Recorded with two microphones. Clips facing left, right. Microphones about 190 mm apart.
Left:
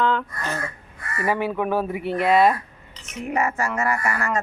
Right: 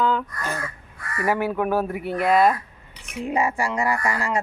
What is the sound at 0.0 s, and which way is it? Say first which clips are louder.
Speech: even; 5° right (ahead or behind).